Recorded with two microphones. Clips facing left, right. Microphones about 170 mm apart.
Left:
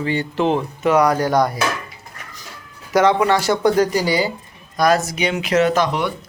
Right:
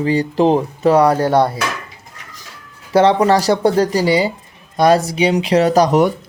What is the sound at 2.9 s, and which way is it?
Speech, 35° right (ahead or behind).